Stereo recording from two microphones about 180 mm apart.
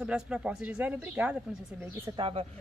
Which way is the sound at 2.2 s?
30° right (ahead or behind).